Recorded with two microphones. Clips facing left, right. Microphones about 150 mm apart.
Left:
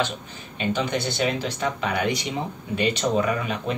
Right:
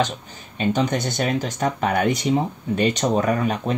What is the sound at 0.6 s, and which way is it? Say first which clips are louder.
Speech: right 4 dB; 40° right (ahead or behind).